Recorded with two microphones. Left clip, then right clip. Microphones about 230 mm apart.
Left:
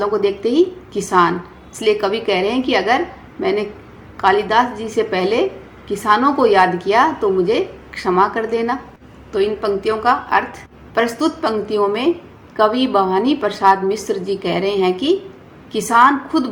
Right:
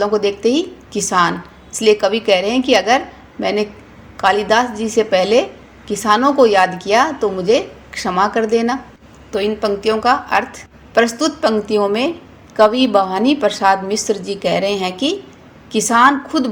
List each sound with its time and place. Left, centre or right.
0.0 s a woman's voice: right